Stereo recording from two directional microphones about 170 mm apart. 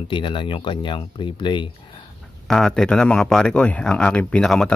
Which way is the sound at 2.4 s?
5° left (ahead or behind).